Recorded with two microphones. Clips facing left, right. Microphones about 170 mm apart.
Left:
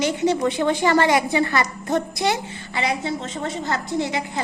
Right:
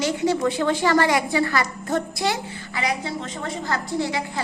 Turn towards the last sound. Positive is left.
turn(degrees=20)  # may be behind; listen again after turning